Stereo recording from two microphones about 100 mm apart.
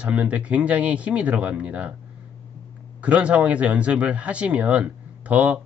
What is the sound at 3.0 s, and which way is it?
Speech, 15° right (ahead or behind).